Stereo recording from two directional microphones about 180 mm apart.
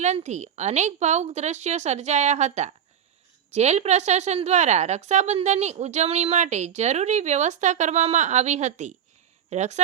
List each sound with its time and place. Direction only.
0.0 s a woman's voice: 40° right (ahead or behind)